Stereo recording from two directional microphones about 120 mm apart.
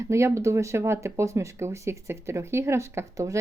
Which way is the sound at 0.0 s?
25° right (ahead or behind).